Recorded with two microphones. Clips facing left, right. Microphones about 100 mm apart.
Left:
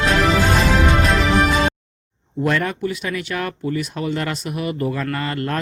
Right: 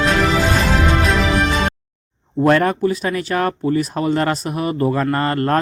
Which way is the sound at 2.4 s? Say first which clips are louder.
Right 6 dB; 45° right (ahead or behind).